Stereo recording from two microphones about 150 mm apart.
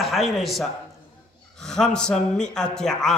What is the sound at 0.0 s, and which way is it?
A man's voice, centre (ahead or behind).